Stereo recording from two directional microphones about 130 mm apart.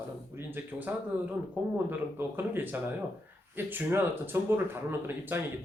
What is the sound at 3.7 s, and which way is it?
Speech, 15° right (ahead or behind).